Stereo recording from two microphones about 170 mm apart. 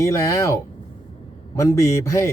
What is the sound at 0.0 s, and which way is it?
A man's voice, 15° left (ahead or behind).